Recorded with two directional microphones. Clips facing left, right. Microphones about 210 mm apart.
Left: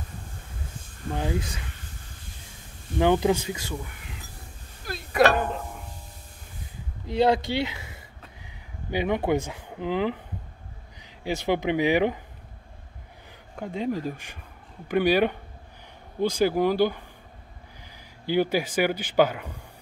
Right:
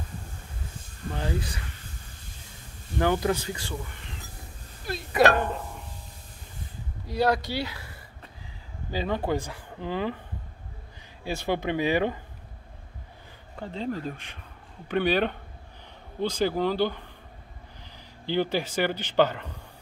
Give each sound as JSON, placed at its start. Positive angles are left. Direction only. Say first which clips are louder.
{"t": 1.1, "sound": "speech", "louder": "left 3 dB", "side_deg": 15}
{"t": 3.0, "sound": "speech", "louder": "left 4 dB", "side_deg": 20}
{"t": 7.1, "sound": "speech", "louder": "left 3 dB", "side_deg": 20}
{"t": 13.6, "sound": "speech", "louder": "left 3 dB", "side_deg": 10}